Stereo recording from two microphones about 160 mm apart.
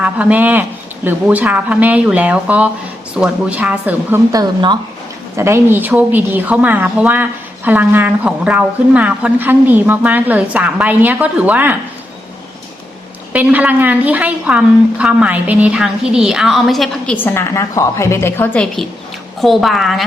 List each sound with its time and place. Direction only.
0.0 s speech: 10° right (ahead or behind)
4.3 s speech: 25° right (ahead or behind)
13.3 s speech: 10° right (ahead or behind)
17.2 s a woman's voice: 15° left (ahead or behind); by 20.1 s centre (ahead or behind)